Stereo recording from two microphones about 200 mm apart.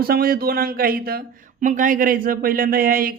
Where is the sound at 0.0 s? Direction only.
50° right (ahead or behind).